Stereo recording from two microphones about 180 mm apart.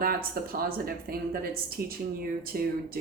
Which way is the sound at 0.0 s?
55° right (ahead or behind).